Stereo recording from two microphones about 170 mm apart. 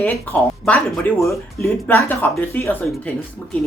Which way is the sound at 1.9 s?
10° left (ahead or behind).